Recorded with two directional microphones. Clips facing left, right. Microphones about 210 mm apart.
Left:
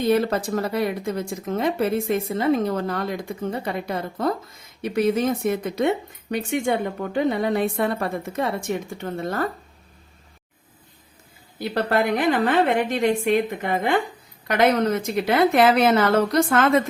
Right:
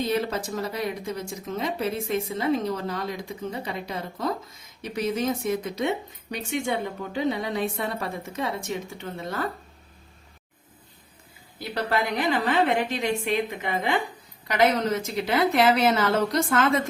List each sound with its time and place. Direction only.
0.1 s a woman's voice: 55° left (ahead or behind)
11.7 s a woman's voice: 50° left (ahead or behind)